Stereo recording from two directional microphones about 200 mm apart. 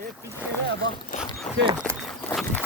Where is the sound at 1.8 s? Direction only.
5° left (ahead or behind).